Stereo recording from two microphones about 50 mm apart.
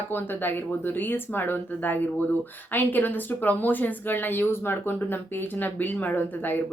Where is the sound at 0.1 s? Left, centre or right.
Left.